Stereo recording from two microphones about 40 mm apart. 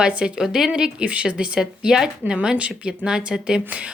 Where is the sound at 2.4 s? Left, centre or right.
Right.